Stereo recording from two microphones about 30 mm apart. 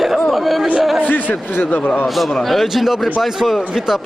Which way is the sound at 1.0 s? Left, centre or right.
Left.